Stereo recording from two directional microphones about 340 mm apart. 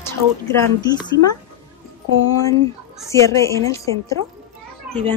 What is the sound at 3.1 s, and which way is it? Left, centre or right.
Speech, centre.